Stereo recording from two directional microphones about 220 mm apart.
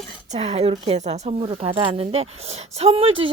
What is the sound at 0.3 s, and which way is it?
Speech, 30° right (ahead or behind).